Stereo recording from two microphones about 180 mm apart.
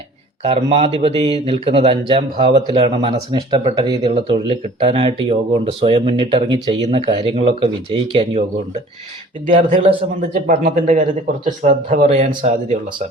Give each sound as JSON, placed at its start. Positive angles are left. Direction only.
{"t": 0.4, "sound": "speech", "side_deg": -30}
{"t": 4.0, "sound": "speech", "side_deg": -35}
{"t": 9.5, "sound": "a man's voice", "side_deg": -35}